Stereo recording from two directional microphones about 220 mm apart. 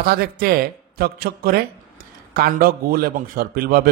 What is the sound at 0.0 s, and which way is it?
A man's voice, 40° right (ahead or behind).